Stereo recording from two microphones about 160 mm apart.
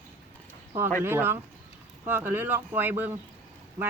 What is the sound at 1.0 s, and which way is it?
Speech, 15° right (ahead or behind).